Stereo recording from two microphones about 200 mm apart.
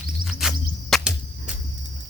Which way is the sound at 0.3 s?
Centre (ahead or behind).